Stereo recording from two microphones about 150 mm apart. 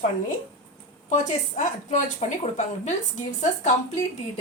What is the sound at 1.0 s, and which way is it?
A woman's voice, 55° left (ahead or behind).